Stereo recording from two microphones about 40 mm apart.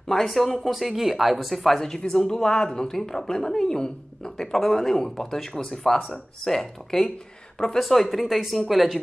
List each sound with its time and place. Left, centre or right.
0.1 s speech: centre
4.5 s a woman's voice: centre
7.8 s speech: centre